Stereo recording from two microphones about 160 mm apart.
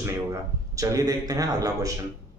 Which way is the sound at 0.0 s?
20° right (ahead or behind).